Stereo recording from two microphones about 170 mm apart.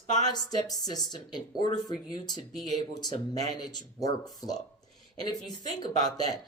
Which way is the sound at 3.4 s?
25° left (ahead or behind).